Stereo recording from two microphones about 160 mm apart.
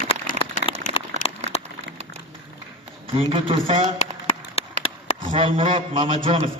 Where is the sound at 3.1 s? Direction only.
35° right (ahead or behind).